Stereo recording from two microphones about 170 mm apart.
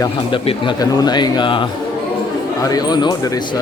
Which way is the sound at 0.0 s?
30° left (ahead or behind).